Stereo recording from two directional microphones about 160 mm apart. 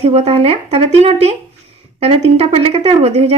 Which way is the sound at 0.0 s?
40° right (ahead or behind).